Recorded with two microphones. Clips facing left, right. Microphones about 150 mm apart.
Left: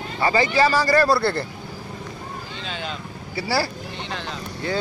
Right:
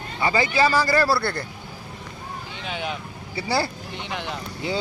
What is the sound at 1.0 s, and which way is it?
Speech, 20° left (ahead or behind).